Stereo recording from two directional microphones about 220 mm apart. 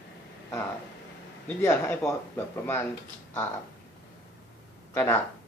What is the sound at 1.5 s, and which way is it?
Speech, 10° left (ahead or behind).